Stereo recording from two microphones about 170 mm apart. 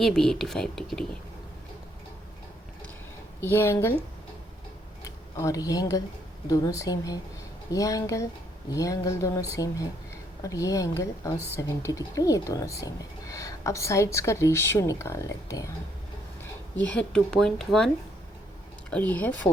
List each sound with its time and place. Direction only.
0.0 s a woman's voice: 5° left (ahead or behind)
3.4 s speech: 15° left (ahead or behind)
5.0 s speech: 20° left (ahead or behind)
16.7 s a woman's voice: 5° left (ahead or behind)